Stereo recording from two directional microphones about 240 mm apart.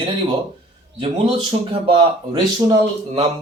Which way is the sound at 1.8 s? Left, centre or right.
Centre.